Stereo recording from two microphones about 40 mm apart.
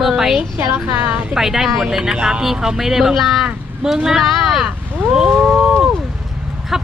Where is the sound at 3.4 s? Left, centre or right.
Centre.